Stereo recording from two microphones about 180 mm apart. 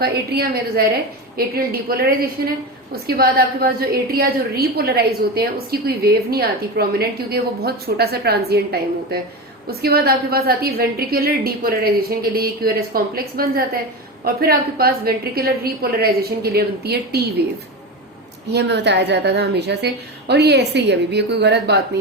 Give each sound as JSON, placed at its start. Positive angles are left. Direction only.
{"t": 0.0, "sound": "a woman's voice", "side_deg": -60}
{"t": 18.5, "sound": "a woman's voice", "side_deg": -70}